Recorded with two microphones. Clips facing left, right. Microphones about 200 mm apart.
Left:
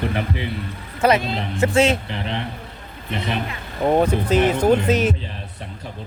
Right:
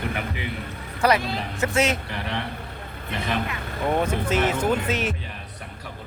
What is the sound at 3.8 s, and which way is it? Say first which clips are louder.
Speech: left 6 dB; 35° left (ahead or behind).